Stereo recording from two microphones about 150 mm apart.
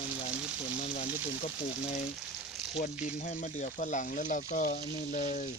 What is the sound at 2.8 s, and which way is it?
Speech, 60° left (ahead or behind).